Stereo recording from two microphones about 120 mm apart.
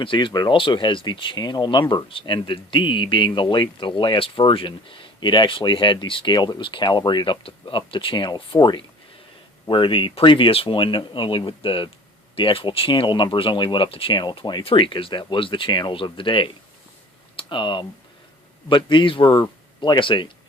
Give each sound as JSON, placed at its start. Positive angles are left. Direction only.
{"t": 0.0, "sound": "speech", "side_deg": 45}